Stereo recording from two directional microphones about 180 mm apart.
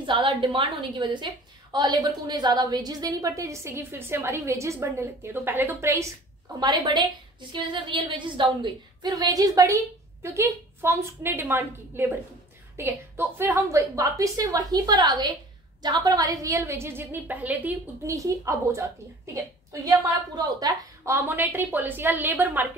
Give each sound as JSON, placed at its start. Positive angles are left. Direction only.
{"t": 0.0, "sound": "a woman's voice", "side_deg": -30}